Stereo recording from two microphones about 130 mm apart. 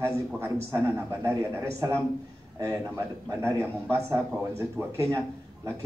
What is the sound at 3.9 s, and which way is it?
A man's voice, 20° right (ahead or behind).